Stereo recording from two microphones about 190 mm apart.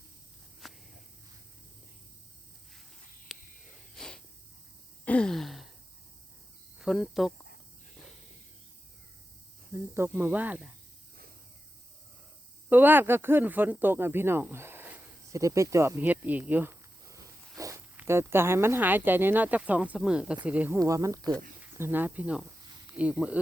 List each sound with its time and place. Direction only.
0.6 s walk: centre (ahead or behind)
3.3 s a sound: centre (ahead or behind)
6.8 s speech: centre (ahead or behind)
9.7 s speech: 10° right (ahead or behind)
12.6 s speech: 10° right (ahead or behind)